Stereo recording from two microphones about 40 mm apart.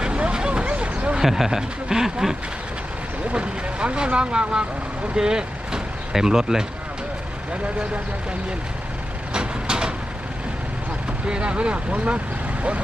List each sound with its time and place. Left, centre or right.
0.0 s a sound: right
1.2 s speech: centre
3.3 s speech: right
9.3 s vehicle: right
11.3 s speech: right